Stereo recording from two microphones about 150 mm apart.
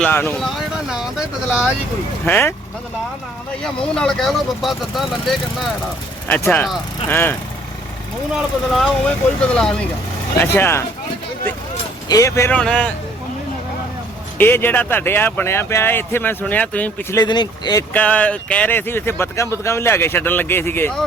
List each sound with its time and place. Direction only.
0.0 s speech: 10° left (ahead or behind)
0.3 s a sound: centre (ahead or behind)
2.2 s speech: 15° left (ahead or behind)
3.6 s speech: 5° left (ahead or behind)
6.2 s speech: 10° left (ahead or behind)
8.4 s speech: centre (ahead or behind)
12.0 s speech: 20° left (ahead or behind)
12.5 s speech: 5° left (ahead or behind)
14.3 s speech: 15° left (ahead or behind)
17.2 s speech: 30° left (ahead or behind)
17.9 s speech: 10° left (ahead or behind)